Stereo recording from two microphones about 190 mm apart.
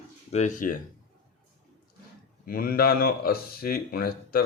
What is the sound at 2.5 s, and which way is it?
Speech, 50° left (ahead or behind).